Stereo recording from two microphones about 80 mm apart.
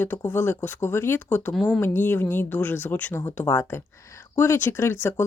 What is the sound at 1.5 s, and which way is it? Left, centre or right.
Speech, centre.